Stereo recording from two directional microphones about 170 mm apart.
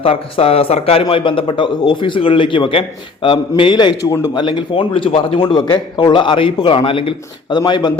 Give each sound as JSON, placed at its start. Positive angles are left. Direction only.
{"t": 0.0, "sound": "a man's voice", "side_deg": 35}